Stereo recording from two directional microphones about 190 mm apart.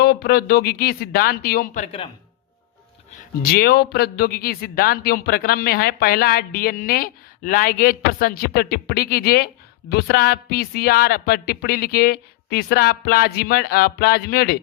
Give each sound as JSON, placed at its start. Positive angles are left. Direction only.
{"t": 0.0, "sound": "speech", "side_deg": 55}
{"t": 3.4, "sound": "speech", "side_deg": 55}